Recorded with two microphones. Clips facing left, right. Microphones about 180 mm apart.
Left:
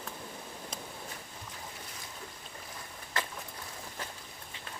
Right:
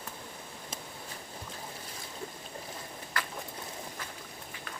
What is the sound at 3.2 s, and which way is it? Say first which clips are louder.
Boat: left 1 dB; 25° left (ahead or behind).